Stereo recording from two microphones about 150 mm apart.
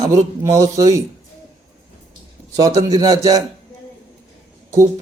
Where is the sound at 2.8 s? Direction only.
25° right (ahead or behind).